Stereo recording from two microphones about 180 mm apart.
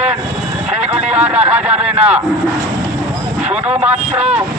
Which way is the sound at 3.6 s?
5° right (ahead or behind).